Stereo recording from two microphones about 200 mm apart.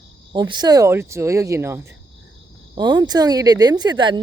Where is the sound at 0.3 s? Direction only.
20° right (ahead or behind).